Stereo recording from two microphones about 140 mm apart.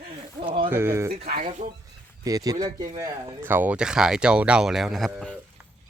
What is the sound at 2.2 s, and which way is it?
Speech, 25° right (ahead or behind).